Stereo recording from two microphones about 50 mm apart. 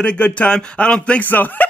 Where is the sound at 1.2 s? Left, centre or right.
Left.